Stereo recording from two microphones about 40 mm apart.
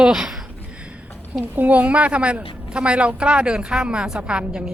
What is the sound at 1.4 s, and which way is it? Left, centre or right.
Speech, right.